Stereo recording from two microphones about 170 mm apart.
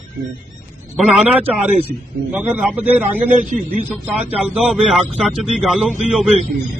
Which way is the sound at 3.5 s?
50° right (ahead or behind).